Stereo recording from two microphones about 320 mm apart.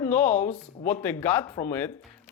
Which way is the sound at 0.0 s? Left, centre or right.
Centre.